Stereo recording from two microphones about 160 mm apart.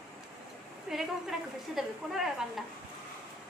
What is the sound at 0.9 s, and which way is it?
A woman's voice, centre (ahead or behind).